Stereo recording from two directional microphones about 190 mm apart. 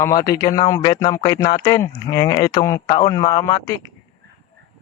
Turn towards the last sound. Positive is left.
turn(degrees=15)  # may be behind; listen again after turning